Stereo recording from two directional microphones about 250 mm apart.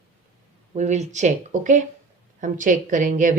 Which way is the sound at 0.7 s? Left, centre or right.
Right.